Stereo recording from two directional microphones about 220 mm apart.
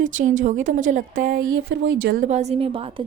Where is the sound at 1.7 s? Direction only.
50° right (ahead or behind); by 3.0 s 25° right (ahead or behind).